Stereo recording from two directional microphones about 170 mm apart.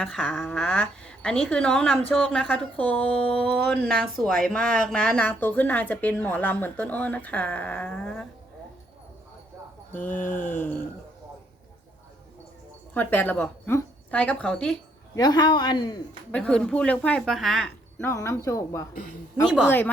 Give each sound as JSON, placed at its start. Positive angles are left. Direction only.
{"t": 0.0, "sound": "a woman's voice", "side_deg": 5}
{"t": 9.9, "sound": "a woman's voice", "side_deg": 10}
{"t": 12.9, "sound": "a woman's voice", "side_deg": 10}
{"t": 15.1, "sound": "speech", "side_deg": 25}
{"t": 16.3, "sound": "speech", "side_deg": 5}
{"t": 18.0, "sound": "a woman's voice", "side_deg": 15}